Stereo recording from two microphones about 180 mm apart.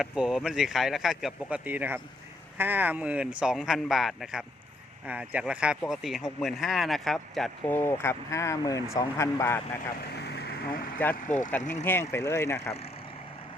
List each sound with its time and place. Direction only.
0.0 s speech: 5° right (ahead or behind)
7.8 s speech: 15° left (ahead or behind)
10.2 s vehicle: 65° left (ahead or behind)
10.9 s speech: 10° left (ahead or behind)
11.3 s speech: 45° left (ahead or behind)
11.9 s speech: 15° left (ahead or behind)